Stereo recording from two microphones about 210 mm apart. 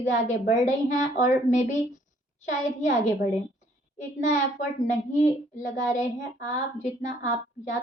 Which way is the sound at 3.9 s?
35° left (ahead or behind).